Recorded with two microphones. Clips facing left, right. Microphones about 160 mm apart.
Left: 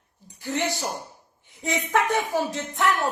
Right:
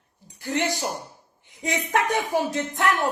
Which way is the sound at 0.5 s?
15° right (ahead or behind).